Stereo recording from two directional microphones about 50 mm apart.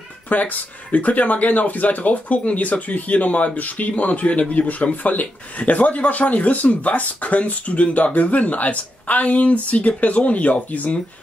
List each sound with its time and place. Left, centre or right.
0.3 s speech: left